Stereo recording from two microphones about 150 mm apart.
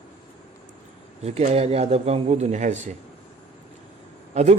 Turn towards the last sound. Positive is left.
turn(degrees=-50)  # may be behind; listen again after turning